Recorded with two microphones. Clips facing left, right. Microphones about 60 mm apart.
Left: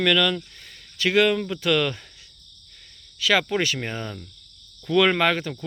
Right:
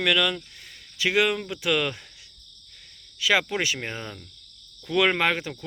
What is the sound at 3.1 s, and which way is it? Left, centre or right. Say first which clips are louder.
Speech: left 2 dB; centre.